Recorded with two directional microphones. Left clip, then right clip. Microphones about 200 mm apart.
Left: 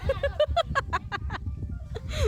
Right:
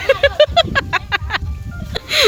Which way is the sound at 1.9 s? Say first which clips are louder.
Right 18 dB; 10° left (ahead or behind).